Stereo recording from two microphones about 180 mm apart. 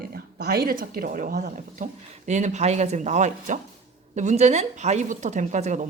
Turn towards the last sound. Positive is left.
turn(degrees=-40)  # may be behind; listen again after turning